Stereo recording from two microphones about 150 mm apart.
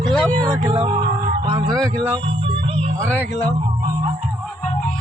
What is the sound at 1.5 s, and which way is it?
Speech, 25° right (ahead or behind).